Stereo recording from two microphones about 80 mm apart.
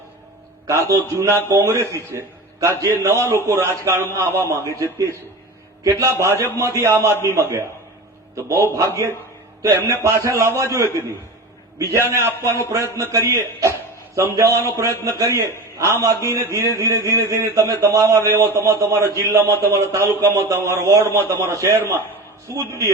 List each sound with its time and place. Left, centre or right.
0.7 s a man's voice: right
2.1 s a sound: right
3.0 s a man's voice: right